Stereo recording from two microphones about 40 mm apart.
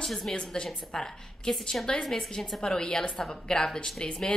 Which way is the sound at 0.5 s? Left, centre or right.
Left.